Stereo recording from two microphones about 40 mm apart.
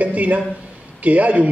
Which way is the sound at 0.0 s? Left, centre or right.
Right.